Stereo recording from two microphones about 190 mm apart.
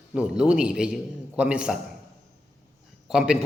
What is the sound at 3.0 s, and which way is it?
Speech, 5° right (ahead or behind).